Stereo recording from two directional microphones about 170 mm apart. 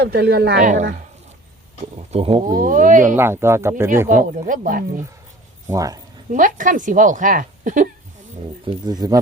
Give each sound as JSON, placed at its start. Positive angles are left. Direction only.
{"t": 0.0, "sound": "a woman's voice", "side_deg": -70}
{"t": 0.6, "sound": "a woman's voice", "side_deg": -50}
{"t": 1.8, "sound": "speech", "side_deg": -40}
{"t": 2.6, "sound": "a woman's voice", "side_deg": -50}
{"t": 3.2, "sound": "speech", "side_deg": -15}
{"t": 4.4, "sound": "a woman's voice", "side_deg": -50}
{"t": 5.6, "sound": "speech", "side_deg": -20}
{"t": 6.3, "sound": "a woman's voice", "side_deg": -50}
{"t": 8.6, "sound": "speech", "side_deg": -25}